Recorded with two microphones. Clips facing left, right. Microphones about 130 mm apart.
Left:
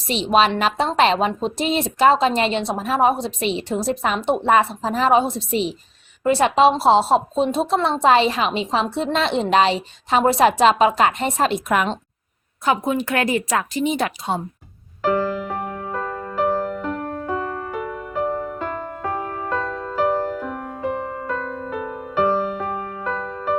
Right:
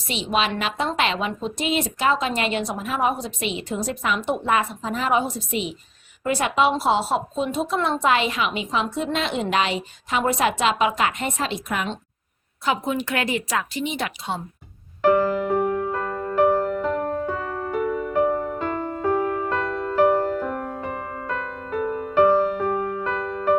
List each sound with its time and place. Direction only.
0.3 s a woman's voice: 40° left (ahead or behind); by 11.9 s 55° left (ahead or behind)
12.6 s a woman's voice: 45° left (ahead or behind)
15.9 s music: centre (ahead or behind)
21.2 s music: centre (ahead or behind)